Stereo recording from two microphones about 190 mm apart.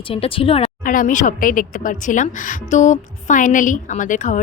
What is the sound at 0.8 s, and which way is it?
A woman's voice, 45° left (ahead or behind).